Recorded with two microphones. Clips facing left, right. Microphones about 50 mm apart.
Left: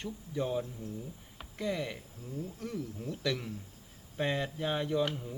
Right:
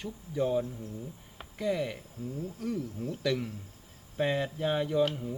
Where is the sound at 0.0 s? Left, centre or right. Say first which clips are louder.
Right 4 dB; centre.